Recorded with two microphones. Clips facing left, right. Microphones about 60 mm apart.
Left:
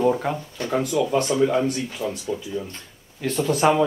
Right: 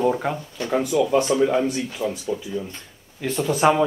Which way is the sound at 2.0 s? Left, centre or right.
Right.